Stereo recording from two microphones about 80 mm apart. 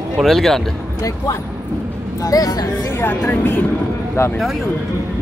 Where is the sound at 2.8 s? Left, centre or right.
Left.